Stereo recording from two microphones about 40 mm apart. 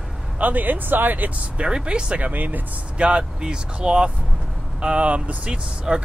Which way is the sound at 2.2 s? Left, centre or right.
Right.